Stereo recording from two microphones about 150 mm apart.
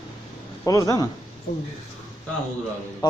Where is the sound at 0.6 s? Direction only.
20° left (ahead or behind).